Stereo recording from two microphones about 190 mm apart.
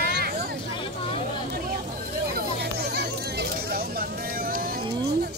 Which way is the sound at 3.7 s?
50° right (ahead or behind).